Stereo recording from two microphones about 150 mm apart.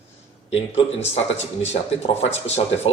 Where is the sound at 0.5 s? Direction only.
45° left (ahead or behind).